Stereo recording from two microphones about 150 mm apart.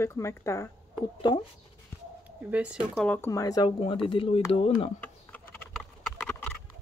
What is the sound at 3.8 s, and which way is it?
Speech, 35° left (ahead or behind).